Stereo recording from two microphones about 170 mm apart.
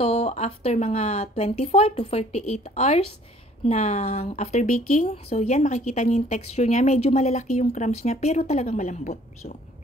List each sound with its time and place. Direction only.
0.0 s a woman's voice: 40° left (ahead or behind)